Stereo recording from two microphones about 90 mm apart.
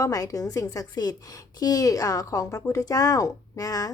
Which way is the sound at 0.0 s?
40° left (ahead or behind).